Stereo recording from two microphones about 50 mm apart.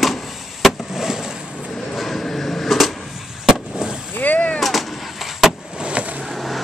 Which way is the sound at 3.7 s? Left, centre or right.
Centre.